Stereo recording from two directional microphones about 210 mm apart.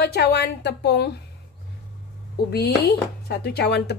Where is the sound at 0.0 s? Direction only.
50° left (ahead or behind).